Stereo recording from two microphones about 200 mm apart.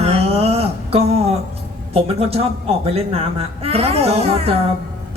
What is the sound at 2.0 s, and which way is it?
A woman's voice, 30° right (ahead or behind).